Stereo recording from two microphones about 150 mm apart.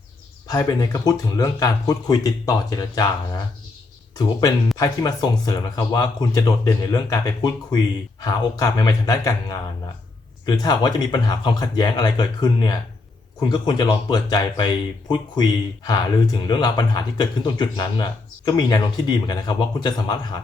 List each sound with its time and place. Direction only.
0.4 s speech: 25° left (ahead or behind)
4.8 s speech: 25° left (ahead or behind)